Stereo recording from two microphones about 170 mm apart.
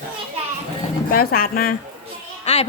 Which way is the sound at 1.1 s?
60° left (ahead or behind).